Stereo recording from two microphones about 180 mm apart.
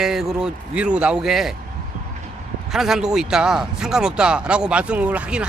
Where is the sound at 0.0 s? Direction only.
Centre (ahead or behind).